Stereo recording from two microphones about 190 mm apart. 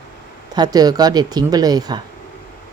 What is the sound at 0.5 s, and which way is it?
Speech, 20° right (ahead or behind).